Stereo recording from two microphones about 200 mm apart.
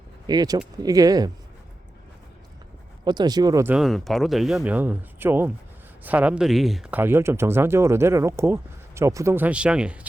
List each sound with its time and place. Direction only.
0.3 s speech: 20° right (ahead or behind)
3.0 s speech: 20° right (ahead or behind); by 10.1 s 5° right (ahead or behind)